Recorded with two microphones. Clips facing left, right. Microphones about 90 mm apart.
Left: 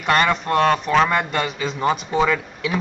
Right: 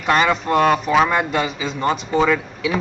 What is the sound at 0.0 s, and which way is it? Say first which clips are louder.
Speech: right 1 dB; centre (ahead or behind).